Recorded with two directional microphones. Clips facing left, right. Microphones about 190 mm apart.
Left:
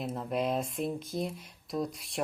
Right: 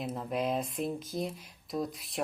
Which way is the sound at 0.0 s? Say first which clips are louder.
Left 1 dB; centre (ahead or behind).